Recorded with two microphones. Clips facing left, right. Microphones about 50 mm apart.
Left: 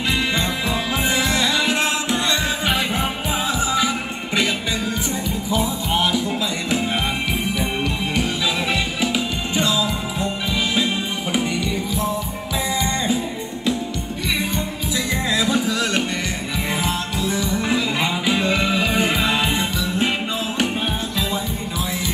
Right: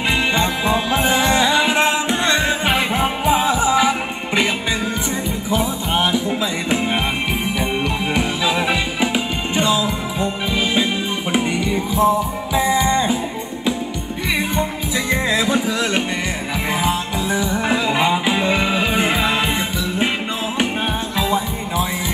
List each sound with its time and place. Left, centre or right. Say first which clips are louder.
1.3 s music: right 4 dB; right
5.5 s music: right 2 dB; right
8.1 s music: right 5 dB; right
9.6 s music: right 2 dB; right
15.0 s music: right 3 dB; right
17.2 s music: even; right
21.2 s music: right 4 dB; right